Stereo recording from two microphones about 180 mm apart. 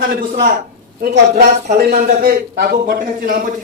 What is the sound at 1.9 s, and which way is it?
A man's voice, 45° right (ahead or behind).